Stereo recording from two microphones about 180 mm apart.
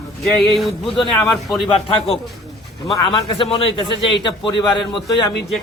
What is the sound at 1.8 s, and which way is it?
A man's voice, 30° left (ahead or behind).